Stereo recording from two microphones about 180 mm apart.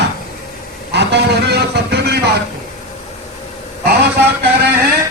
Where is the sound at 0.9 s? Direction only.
70° right (ahead or behind).